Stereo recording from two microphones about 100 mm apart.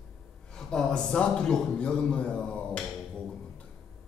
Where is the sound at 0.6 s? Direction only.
5° left (ahead or behind).